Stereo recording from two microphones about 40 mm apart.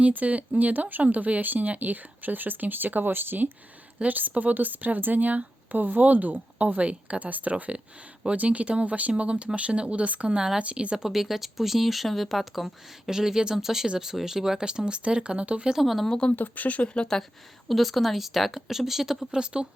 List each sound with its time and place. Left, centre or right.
0.1 s speech: right
10.9 s speech: centre
13.1 s speech: centre
14.6 s speech: right
15.7 s speech: centre
16.0 s speech: left
16.3 s speech: left
17.7 s speech: centre
19.3 s speech: right